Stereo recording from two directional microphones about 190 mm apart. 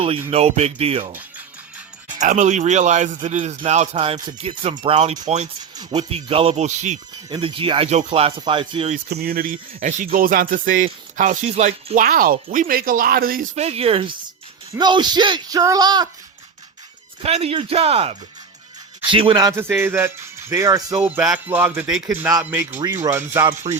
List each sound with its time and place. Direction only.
0.3 s speech: 35° right (ahead or behind)
2.2 s speech: 40° right (ahead or behind)
7.3 s speech: 25° right (ahead or behind)
9.0 s speech: 55° right (ahead or behind)
13.6 s speech: 35° right (ahead or behind)
17.2 s speech: 30° right (ahead or behind); by 23.7 s 15° right (ahead or behind)